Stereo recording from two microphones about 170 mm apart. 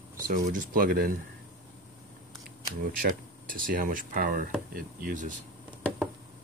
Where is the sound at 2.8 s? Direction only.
55° right (ahead or behind).